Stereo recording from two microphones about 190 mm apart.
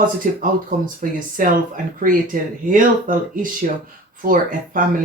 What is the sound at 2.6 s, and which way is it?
Speech, 45° right (ahead or behind).